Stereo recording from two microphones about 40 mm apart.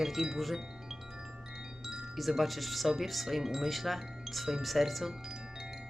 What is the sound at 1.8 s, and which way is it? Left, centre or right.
Chime, centre.